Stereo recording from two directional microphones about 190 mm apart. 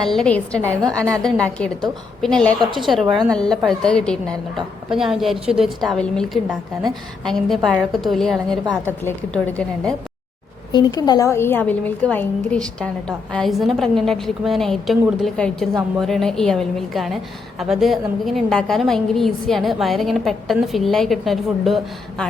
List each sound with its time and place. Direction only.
0.0 s a woman's voice: centre (ahead or behind)
10.7 s a woman's voice: 20° left (ahead or behind); by 22.3 s 5° left (ahead or behind)